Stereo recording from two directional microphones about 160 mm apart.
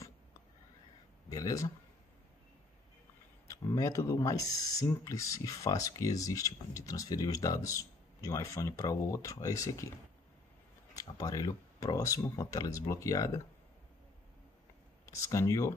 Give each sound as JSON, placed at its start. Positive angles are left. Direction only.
{"t": 1.3, "sound": "speech", "side_deg": 20}
{"t": 3.4, "sound": "speech", "side_deg": 20}
{"t": 11.0, "sound": "speech", "side_deg": 20}
{"t": 15.0, "sound": "speech", "side_deg": 20}